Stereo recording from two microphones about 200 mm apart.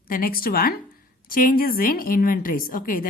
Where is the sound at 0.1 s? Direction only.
45° left (ahead or behind).